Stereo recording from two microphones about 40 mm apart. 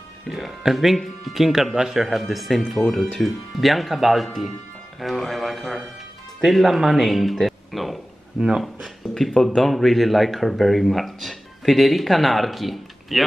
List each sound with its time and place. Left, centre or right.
0.3 s a man's voice: centre
8.4 s speech: centre
8.8 s a man's voice: centre